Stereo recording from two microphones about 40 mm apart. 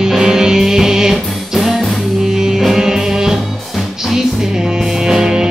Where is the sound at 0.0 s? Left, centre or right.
Centre.